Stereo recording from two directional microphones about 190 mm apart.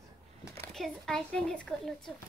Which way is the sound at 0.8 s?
Centre (ahead or behind).